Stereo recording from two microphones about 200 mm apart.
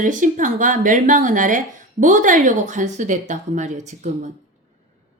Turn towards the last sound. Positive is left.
turn(degrees=-35)  # may be behind; listen again after turning